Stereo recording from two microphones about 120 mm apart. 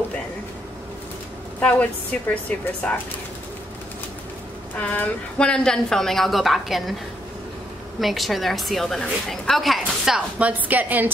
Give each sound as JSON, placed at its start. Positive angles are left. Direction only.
{"t": 1.6, "sound": "a woman's voice", "side_deg": 10}
{"t": 4.7, "sound": "a woman's voice", "side_deg": 15}
{"t": 8.0, "sound": "a woman's voice", "side_deg": 0}